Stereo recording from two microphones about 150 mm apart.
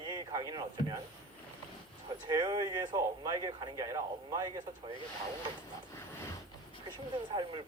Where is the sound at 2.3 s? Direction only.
25° right (ahead or behind).